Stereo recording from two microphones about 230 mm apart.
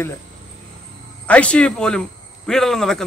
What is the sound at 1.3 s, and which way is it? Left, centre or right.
Speech, centre.